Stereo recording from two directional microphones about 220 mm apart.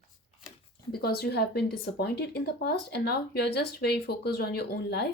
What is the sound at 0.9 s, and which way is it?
Speech, 45° left (ahead or behind).